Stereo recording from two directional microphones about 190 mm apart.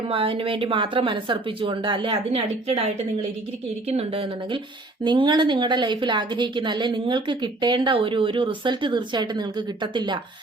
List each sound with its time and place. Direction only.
0.1 s a woman's voice: 30° right (ahead or behind)